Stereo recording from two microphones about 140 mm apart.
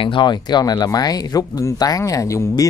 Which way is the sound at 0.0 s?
35° left (ahead or behind).